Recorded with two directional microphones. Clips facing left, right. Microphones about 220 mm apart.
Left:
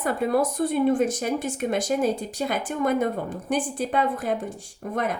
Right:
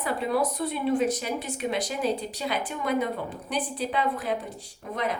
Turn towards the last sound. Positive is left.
turn(degrees=50)  # may be behind; listen again after turning